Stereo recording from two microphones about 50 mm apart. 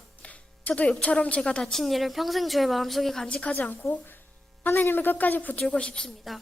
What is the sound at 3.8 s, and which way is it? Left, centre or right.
A woman's voice, left.